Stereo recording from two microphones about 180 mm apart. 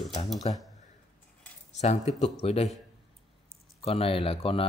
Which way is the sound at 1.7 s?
40° left (ahead or behind).